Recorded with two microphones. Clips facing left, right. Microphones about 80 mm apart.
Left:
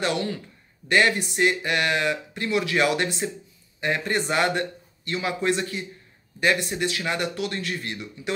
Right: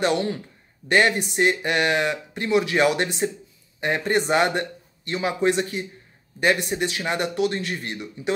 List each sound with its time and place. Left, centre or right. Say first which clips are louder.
0.0 s speech: right 4 dB; right